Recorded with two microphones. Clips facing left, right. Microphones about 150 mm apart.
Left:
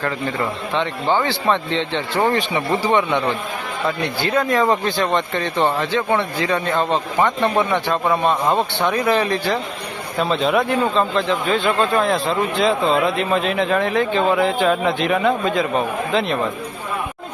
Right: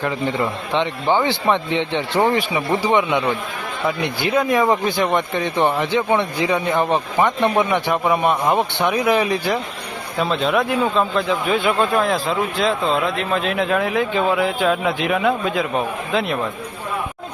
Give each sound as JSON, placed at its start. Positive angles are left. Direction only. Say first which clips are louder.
{"t": 0.0, "sound": "speech", "louder": "right 1 dB", "side_deg": -15}
{"t": 10.2, "sound": "a man's voice", "louder": "left 1 dB", "side_deg": 0}